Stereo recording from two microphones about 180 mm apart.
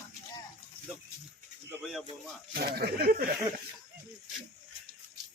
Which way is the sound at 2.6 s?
60° right (ahead or behind).